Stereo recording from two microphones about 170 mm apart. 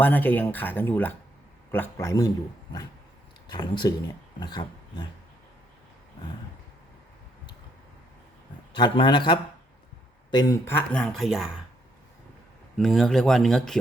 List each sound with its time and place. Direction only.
0.0 s speech: 10° left (ahead or behind)
3.5 s a man's voice: 25° left (ahead or behind)
8.7 s a man's voice: 25° left (ahead or behind)
10.3 s speech: 15° left (ahead or behind); by 11.6 s 5° right (ahead or behind)
12.7 s speech: centre (ahead or behind)